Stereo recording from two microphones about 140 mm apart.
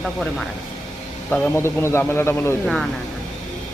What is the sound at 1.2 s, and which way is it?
A man's voice, 10° left (ahead or behind).